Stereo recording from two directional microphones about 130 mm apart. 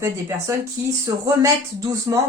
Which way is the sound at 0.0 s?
20° right (ahead or behind).